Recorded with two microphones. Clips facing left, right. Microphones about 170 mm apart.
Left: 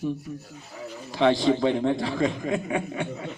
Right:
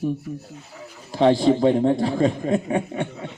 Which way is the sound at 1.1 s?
35° right (ahead or behind).